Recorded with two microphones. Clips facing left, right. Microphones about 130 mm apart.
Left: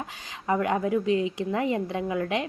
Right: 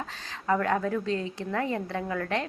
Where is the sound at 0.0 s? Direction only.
15° left (ahead or behind).